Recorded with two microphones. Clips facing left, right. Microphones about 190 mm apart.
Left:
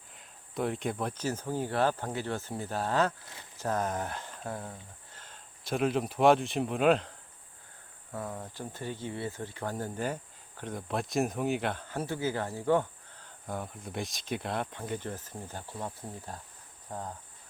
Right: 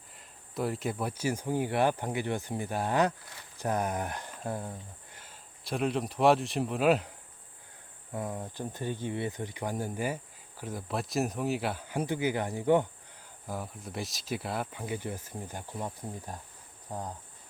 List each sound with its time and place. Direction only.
0.2 s speech: centre (ahead or behind)
8.1 s speech: 20° right (ahead or behind)
13.5 s speech: centre (ahead or behind)